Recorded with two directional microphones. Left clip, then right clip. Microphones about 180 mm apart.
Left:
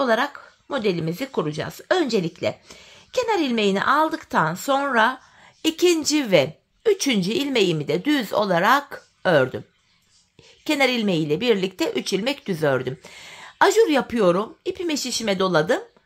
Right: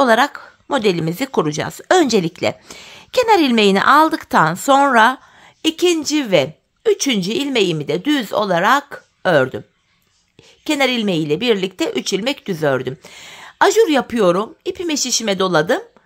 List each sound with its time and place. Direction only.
0.0 s speech: 30° right (ahead or behind)
5.6 s a woman's voice: 10° right (ahead or behind)
10.6 s a woman's voice: 15° right (ahead or behind)